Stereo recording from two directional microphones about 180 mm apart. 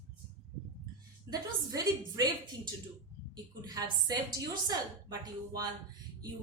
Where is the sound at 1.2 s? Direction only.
20° right (ahead or behind).